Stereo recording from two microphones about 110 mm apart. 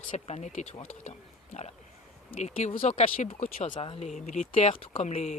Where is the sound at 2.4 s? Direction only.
90° left.